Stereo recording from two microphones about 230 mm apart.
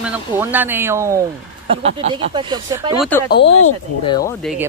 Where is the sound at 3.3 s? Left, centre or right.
Left.